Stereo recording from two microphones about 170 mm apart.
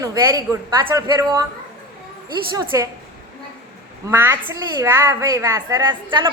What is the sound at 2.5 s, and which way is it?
Speech, 20° right (ahead or behind).